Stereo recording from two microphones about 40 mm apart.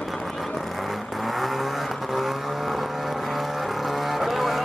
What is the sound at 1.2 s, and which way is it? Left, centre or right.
Vehicle, centre.